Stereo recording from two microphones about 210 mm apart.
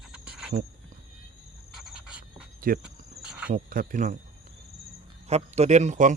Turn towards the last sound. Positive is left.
turn(degrees=-35)  # may be behind; listen again after turning